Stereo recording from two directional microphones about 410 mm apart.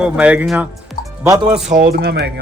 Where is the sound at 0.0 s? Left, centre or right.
Centre.